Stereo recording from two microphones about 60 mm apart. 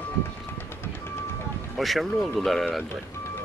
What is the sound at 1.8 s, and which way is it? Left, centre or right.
Speech, centre.